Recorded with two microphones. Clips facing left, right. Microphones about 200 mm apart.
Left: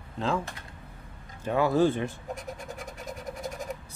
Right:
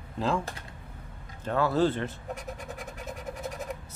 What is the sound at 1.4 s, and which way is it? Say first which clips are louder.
Speech: left 2 dB; 15° left (ahead or behind).